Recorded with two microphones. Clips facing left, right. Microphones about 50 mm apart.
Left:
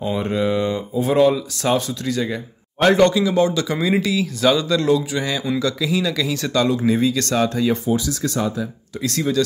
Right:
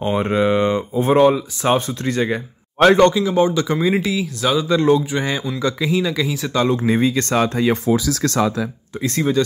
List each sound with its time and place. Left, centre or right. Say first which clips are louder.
0.0 s speech: right 3 dB; right
3.2 s speech: right 1 dB; centre
4.4 s speech: left 2 dB; centre
4.6 s speech: right 2 dB; right
6.9 s speech: right 1 dB; right
7.7 s speech: right 3 dB; right
9.0 s speech: right 2 dB; right